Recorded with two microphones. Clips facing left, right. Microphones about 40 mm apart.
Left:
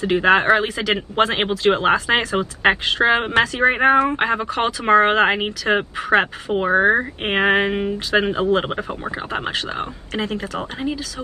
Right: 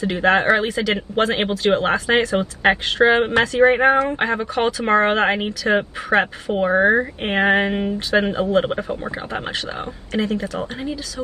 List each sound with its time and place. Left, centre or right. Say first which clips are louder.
0.0 s speech: left 1 dB; left
3.1 s a woman's voice: left 1 dB; left
4.0 s speech: left 1 dB; left
6.1 s a woman's voice: left 1 dB; left
7.2 s a woman's voice: left 1 dB; left